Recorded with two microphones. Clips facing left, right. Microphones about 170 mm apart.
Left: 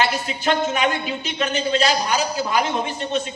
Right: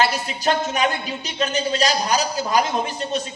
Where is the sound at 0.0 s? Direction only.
35° right (ahead or behind).